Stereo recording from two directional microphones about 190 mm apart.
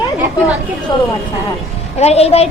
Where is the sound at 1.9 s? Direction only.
35° left (ahead or behind).